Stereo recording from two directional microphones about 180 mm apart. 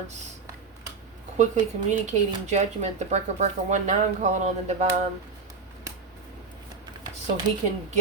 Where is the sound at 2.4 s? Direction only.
40° right (ahead or behind).